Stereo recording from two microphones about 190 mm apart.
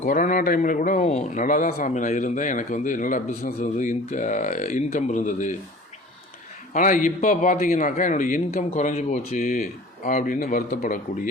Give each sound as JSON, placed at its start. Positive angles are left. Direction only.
{"t": 0.0, "sound": "speech", "side_deg": 45}
{"t": 6.7, "sound": "speech", "side_deg": 45}
{"t": 9.3, "sound": "a man's voice", "side_deg": 45}